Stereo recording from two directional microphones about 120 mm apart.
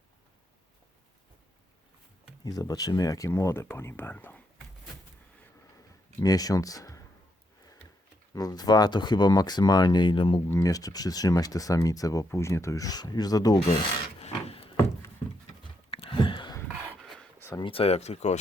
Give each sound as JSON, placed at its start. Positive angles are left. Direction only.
{"t": 2.4, "sound": "speech", "side_deg": 30}
{"t": 6.1, "sound": "speech", "side_deg": 30}
{"t": 8.4, "sound": "speech", "side_deg": 35}
{"t": 10.5, "sound": "speech", "side_deg": 30}
{"t": 14.2, "sound": "a sound", "side_deg": 60}
{"t": 15.9, "sound": "a sound", "side_deg": 50}
{"t": 17.6, "sound": "speech", "side_deg": 50}